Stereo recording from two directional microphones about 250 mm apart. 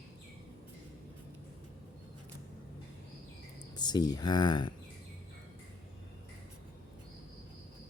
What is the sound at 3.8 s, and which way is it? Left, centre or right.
Speech, centre.